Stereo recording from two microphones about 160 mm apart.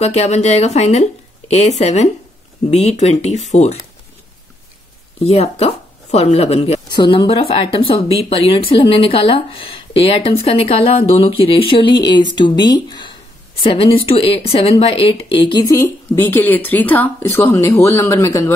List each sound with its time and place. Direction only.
0.0 s speech: 45° left (ahead or behind)
5.2 s speech: 40° left (ahead or behind); by 18.4 s 15° left (ahead or behind)